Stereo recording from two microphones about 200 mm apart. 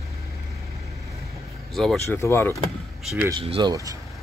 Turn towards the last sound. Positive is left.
turn(degrees=-20)  # may be behind; listen again after turning